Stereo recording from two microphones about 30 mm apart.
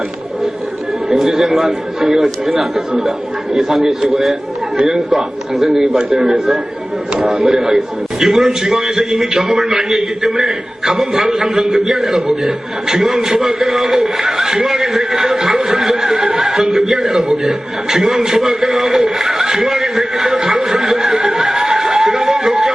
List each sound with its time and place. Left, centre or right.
1.0 s a man's voice: centre
4.8 s a man's voice: centre